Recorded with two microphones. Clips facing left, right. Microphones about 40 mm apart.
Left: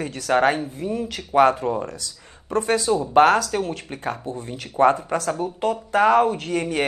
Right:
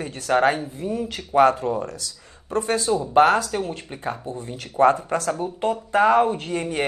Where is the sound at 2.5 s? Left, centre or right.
Left.